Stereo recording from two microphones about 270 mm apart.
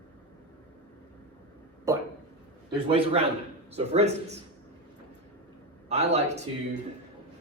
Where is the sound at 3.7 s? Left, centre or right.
Right.